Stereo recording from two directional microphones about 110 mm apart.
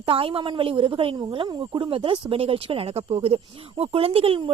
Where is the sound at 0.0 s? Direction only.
55° right (ahead or behind).